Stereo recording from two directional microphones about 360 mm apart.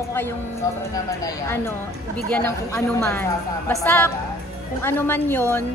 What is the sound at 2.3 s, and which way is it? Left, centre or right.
A woman's voice, centre.